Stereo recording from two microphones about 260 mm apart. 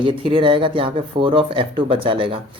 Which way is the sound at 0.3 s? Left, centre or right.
Centre.